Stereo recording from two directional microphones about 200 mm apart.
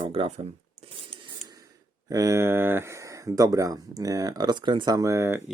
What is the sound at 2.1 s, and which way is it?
Speech, 15° right (ahead or behind).